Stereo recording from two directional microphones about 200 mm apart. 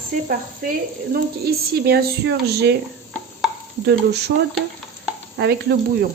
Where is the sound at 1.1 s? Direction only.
50° right (ahead or behind).